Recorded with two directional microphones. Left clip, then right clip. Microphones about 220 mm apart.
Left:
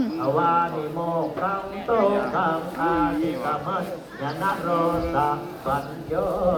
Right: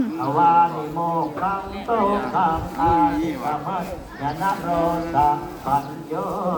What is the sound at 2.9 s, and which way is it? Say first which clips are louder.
Speech: right 4 dB; 45° right (ahead or behind).